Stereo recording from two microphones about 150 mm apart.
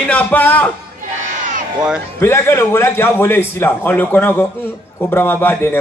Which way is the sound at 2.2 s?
15° left (ahead or behind).